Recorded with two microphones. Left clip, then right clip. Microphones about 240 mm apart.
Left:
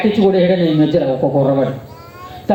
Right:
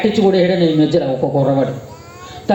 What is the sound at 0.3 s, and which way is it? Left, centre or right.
A man's voice, right.